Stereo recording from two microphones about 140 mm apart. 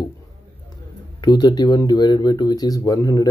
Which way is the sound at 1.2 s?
30° left (ahead or behind).